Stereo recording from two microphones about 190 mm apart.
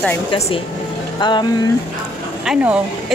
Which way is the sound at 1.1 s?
25° left (ahead or behind).